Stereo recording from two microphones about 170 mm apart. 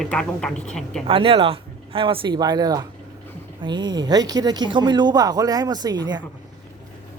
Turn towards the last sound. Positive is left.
turn(degrees=-25)  # may be behind; listen again after turning